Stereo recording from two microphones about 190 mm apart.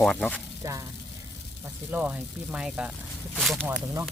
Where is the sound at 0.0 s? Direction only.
5° left (ahead or behind).